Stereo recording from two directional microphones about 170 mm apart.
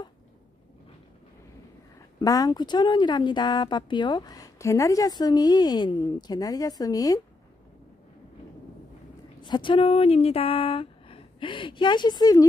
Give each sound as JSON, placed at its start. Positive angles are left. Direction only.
{"t": 2.1, "sound": "speech", "side_deg": 20}
{"t": 9.4, "sound": "speech", "side_deg": 25}